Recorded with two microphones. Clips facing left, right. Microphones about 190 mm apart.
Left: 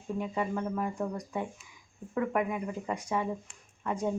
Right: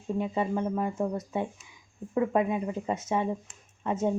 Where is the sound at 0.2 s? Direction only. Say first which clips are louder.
Right 4 dB; 25° right (ahead or behind).